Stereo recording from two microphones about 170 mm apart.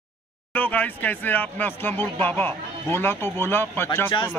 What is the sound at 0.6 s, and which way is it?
A man's voice, 10° left (ahead or behind).